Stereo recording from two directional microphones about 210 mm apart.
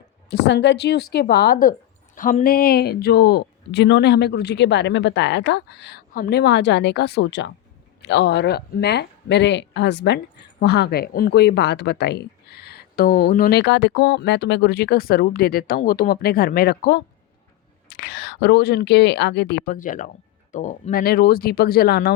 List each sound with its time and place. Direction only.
0.3 s speech: 55° left (ahead or behind)